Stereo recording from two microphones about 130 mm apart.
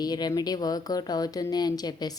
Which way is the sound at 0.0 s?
30° left (ahead or behind).